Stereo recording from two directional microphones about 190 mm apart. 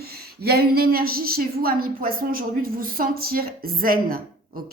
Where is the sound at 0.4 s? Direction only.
55° right (ahead or behind).